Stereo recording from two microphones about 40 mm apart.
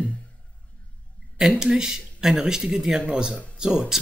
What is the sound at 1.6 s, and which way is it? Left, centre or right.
Speech, centre.